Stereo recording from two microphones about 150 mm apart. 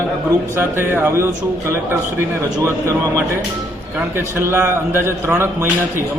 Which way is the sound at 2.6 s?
15° right (ahead or behind).